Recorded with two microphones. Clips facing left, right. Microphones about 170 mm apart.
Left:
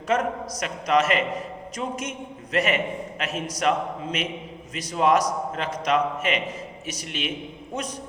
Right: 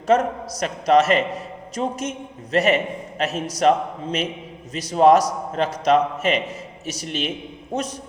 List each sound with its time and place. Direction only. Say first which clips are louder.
0.1 s a man's voice: right 5 dB; 35° right (ahead or behind)